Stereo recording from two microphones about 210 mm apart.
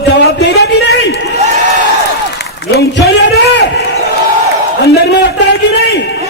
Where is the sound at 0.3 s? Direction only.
50° left (ahead or behind).